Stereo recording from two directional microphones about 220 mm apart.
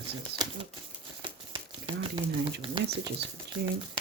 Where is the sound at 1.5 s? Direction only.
25° right (ahead or behind).